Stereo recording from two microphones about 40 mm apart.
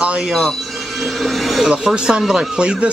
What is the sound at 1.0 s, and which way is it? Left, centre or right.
Music, centre.